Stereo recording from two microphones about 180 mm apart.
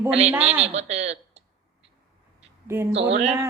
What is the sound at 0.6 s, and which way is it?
Speech, 40° right (ahead or behind).